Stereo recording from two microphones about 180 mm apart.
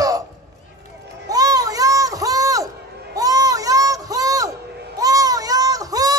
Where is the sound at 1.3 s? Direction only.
20° right (ahead or behind).